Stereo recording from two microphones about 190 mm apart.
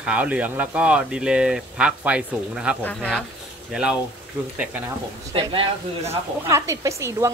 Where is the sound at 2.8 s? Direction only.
5° left (ahead or behind).